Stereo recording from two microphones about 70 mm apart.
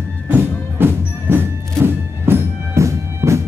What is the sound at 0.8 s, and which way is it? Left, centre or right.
Music, right.